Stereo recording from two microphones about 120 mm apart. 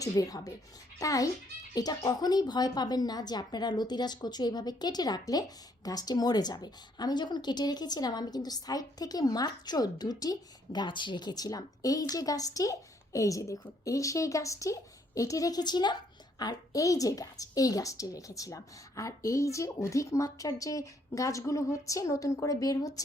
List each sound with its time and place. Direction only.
0.0 s a woman's voice: 30° left (ahead or behind)